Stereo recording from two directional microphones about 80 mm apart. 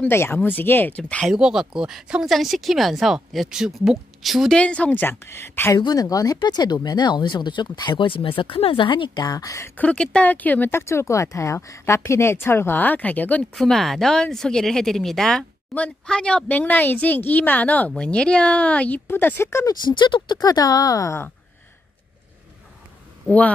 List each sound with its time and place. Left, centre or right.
0.0 s speech: left
1.2 s speech: centre
4.6 s speech: centre; by 5.8 s left
5.8 s speech: left
9.8 s speech: centre
13.6 s speech: centre
19.0 s speech: left
19.6 s speech: left
20.3 s a woman's voice: left